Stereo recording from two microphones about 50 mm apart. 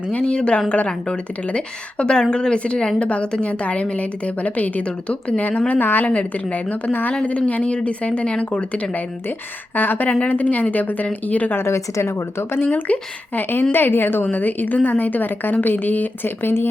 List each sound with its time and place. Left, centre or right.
0.1 s a woman's voice: left
6.1 s a woman's voice: left
7.2 s a woman's voice: left
9.7 s a woman's voice: left
11.5 s a woman's voice: left
12.4 s speech: left
12.6 s a woman's voice: left